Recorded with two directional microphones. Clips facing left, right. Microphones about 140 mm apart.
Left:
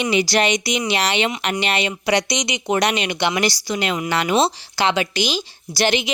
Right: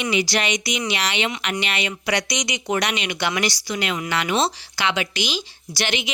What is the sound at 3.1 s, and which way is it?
A woman's voice, 25° left (ahead or behind).